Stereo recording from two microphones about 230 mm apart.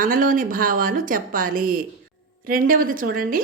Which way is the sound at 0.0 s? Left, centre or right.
Right.